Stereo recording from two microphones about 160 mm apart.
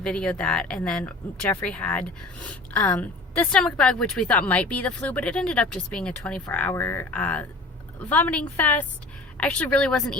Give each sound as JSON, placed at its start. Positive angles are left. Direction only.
{"t": 0.0, "sound": "speech", "side_deg": 5}